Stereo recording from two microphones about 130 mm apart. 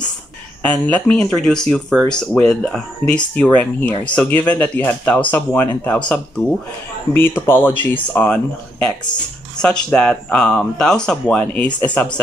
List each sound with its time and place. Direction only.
0.6 s speech: 10° left (ahead or behind)
9.6 s speech: 5° left (ahead or behind)